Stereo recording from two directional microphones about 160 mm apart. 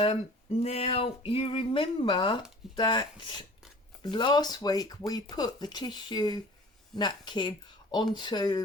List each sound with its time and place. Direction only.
0.6 s speech: 40° left (ahead or behind)